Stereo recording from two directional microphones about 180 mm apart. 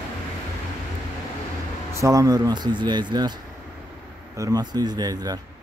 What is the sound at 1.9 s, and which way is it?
Speech, 15° right (ahead or behind).